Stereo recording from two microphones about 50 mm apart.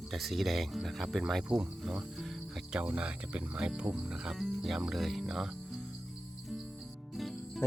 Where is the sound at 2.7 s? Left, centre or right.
Centre.